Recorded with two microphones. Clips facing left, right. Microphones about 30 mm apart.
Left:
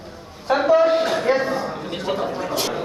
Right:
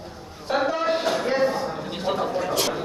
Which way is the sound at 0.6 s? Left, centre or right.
Centre.